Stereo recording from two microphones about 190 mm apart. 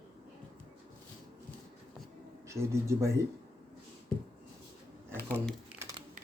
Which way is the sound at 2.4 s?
15° right (ahead or behind).